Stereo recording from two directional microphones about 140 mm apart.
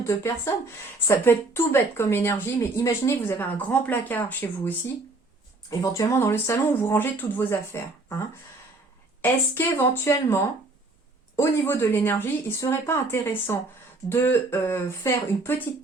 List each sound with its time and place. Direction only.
0.0 s speech: 20° left (ahead or behind)
5.8 s speech: 20° left (ahead or behind)